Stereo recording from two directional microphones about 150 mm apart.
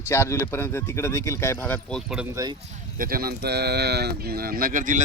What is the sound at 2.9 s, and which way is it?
Speech, 75° right (ahead or behind).